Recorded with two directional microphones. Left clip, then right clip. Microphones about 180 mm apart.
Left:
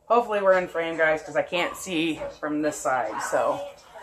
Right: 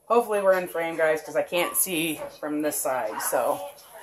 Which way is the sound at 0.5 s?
40° right (ahead or behind).